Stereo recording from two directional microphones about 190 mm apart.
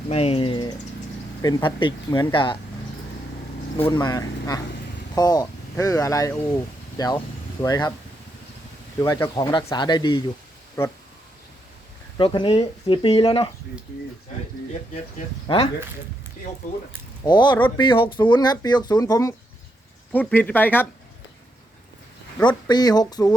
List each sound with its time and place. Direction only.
0.1 s speech: 30° left (ahead or behind)
3.9 s speech: 20° left (ahead or behind)
9.0 s speech: 20° left (ahead or behind)
12.1 s speech: 25° left (ahead or behind)
15.4 s speech: 30° left (ahead or behind)
17.2 s speech: 25° left (ahead or behind)
20.1 s speech: 10° left (ahead or behind)
22.4 s speech: 20° left (ahead or behind)